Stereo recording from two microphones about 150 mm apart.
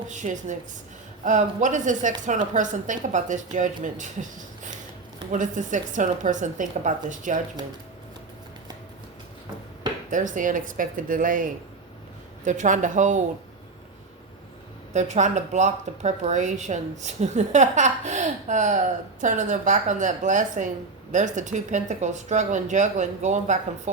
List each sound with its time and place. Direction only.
0.1 s a woman's voice: 55° right (ahead or behind)
10.1 s a woman's voice: 60° right (ahead or behind)
12.5 s a woman's voice: 55° right (ahead or behind)
14.9 s a woman's voice: 50° right (ahead or behind)